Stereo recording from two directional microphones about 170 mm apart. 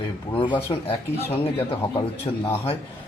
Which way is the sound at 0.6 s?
35° left (ahead or behind).